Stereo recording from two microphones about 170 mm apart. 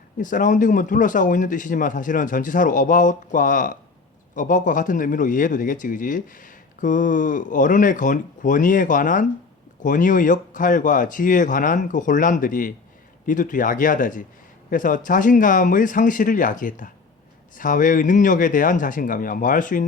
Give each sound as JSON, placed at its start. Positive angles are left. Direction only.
{"t": 0.2, "sound": "a man's voice", "side_deg": 50}